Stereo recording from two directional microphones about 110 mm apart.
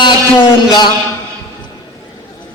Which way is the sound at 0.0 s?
45° left (ahead or behind).